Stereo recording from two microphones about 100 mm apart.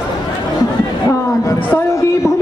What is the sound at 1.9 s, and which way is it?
Speech, 30° left (ahead or behind).